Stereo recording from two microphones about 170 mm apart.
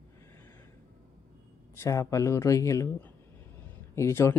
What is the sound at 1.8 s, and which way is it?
Speech, 20° left (ahead or behind).